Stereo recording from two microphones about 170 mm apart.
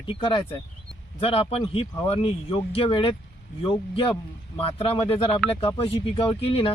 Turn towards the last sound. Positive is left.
turn(degrees=35)  # may be behind; listen again after turning